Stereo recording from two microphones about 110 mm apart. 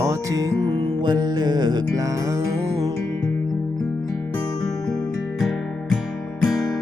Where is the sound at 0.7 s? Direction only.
45° right (ahead or behind).